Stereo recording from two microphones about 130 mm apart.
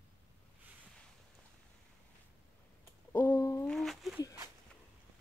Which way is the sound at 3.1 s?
15° left (ahead or behind).